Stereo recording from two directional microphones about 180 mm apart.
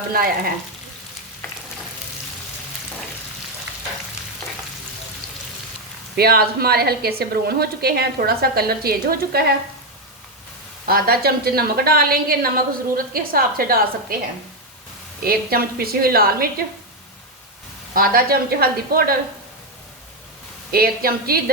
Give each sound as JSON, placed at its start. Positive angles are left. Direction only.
{"t": 0.1, "sound": "a woman's voice", "side_deg": -55}
{"t": 6.1, "sound": "a woman's voice", "side_deg": -60}
{"t": 10.8, "sound": "a woman's voice", "side_deg": -55}
{"t": 15.2, "sound": "a woman's voice", "side_deg": -55}
{"t": 17.9, "sound": "a woman's voice", "side_deg": -55}
{"t": 20.7, "sound": "a woman's voice", "side_deg": -55}